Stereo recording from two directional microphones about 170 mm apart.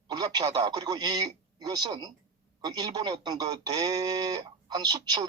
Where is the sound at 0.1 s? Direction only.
25° right (ahead or behind).